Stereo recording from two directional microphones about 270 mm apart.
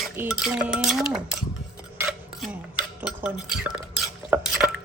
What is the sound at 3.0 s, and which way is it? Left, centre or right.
Dishes, centre.